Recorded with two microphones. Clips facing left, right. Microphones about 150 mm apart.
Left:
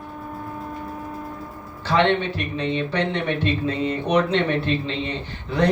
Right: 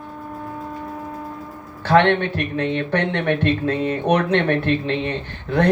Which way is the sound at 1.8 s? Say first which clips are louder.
Right 4 dB; 55° right (ahead or behind).